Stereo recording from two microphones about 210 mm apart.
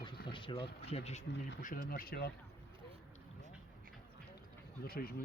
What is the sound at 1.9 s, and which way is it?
Speech, 45° left (ahead or behind).